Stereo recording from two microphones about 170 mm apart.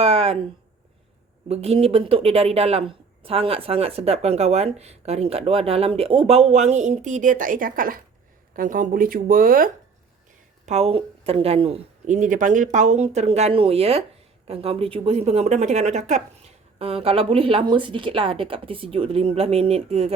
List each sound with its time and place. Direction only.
0.0 s a sound: 35° right (ahead or behind)
1.5 s speech: 35° right (ahead or behind); by 9.7 s 55° right (ahead or behind)
10.7 s speech: 35° right (ahead or behind)
12.0 s speech: 50° right (ahead or behind)